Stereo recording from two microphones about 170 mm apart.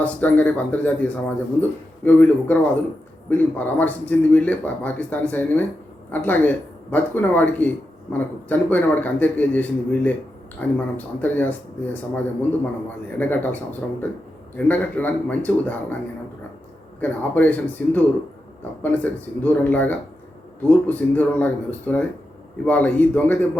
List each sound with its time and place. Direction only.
0.0 s speech: 10° left (ahead or behind)
17.0 s speech: 10° left (ahead or behind)